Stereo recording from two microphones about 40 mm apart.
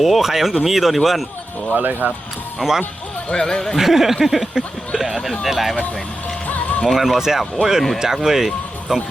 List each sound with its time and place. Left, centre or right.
0.0 s speech: centre
1.7 s speech: right
2.6 s speech: centre
3.4 s speech: centre
3.8 s speech: centre
6.5 s music: left
7.0 s speech: centre